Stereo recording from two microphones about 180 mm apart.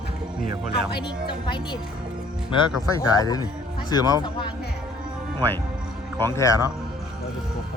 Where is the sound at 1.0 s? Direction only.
25° left (ahead or behind).